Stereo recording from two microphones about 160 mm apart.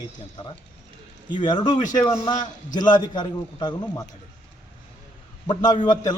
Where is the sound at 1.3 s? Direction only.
30° left (ahead or behind).